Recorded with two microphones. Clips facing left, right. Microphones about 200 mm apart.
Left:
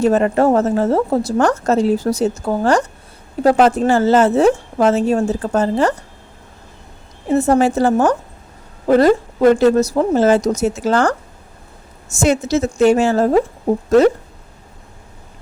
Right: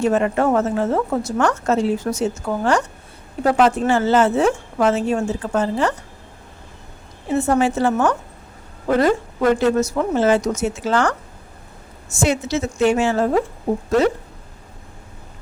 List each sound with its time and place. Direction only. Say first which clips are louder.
0.0 s a woman's voice: left 4 dB; 40° left (ahead or behind)
7.3 s a woman's voice: left 4 dB; 40° left (ahead or behind)